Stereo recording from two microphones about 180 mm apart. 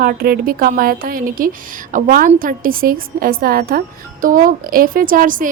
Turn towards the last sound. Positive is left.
turn(degrees=-50)  # may be behind; listen again after turning